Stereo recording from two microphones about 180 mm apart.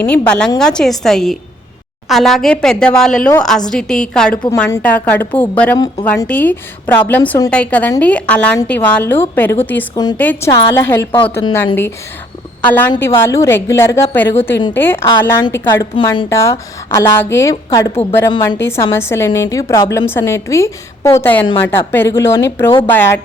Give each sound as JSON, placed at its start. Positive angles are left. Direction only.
{"t": 0.1, "sound": "a woman's voice", "side_deg": 5}
{"t": 5.7, "sound": "speech", "side_deg": 25}
{"t": 6.1, "sound": "a woman's voice", "side_deg": 10}
{"t": 9.9, "sound": "speech", "side_deg": 20}
{"t": 10.2, "sound": "a woman's voice", "side_deg": 10}
{"t": 11.2, "sound": "speech", "side_deg": 30}
{"t": 11.5, "sound": "a woman's voice", "side_deg": 10}
{"t": 18.6, "sound": "a woman's voice", "side_deg": 15}